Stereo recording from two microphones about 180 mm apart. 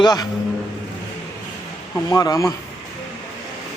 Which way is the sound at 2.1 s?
20° left (ahead or behind).